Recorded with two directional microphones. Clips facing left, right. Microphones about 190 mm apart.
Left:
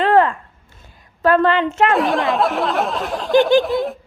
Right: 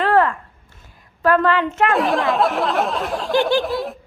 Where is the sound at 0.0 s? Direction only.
20° left (ahead or behind).